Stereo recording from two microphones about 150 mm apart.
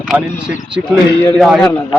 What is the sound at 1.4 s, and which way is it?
Speech, centre (ahead or behind).